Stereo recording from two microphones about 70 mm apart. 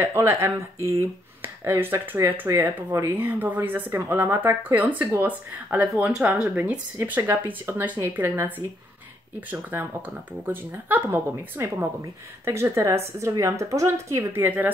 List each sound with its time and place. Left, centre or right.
0.0 s speech: right
3.2 s speech: right
6.1 s speech: centre
7.1 s speech: right
14.4 s speech: right